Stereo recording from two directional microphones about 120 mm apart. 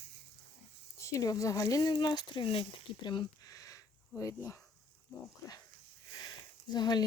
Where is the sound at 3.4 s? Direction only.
30° left (ahead or behind).